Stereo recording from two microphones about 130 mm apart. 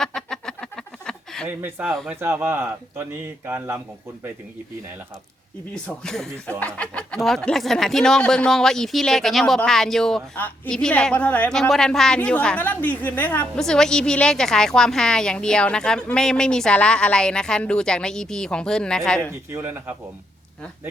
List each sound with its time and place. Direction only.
0.0 s a sound: 5° left (ahead or behind)
1.5 s speech: 15° right (ahead or behind)
5.7 s speech: 5° left (ahead or behind)
19.3 s a man's voice: 20° right (ahead or behind)